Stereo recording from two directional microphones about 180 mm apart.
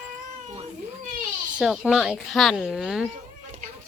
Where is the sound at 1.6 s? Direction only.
5° right (ahead or behind).